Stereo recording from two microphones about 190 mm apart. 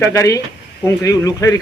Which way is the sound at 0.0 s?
15° left (ahead or behind).